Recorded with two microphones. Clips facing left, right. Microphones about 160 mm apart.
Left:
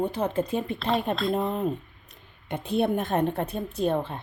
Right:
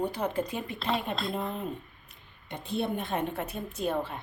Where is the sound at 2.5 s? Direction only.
60° left (ahead or behind); by 4.2 s 30° left (ahead or behind).